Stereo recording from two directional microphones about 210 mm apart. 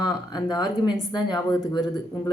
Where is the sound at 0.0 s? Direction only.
20° left (ahead or behind).